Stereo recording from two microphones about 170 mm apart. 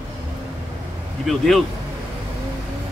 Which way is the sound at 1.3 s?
Centre (ahead or behind).